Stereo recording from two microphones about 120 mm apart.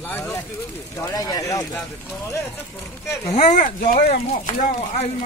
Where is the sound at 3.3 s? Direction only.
90° left.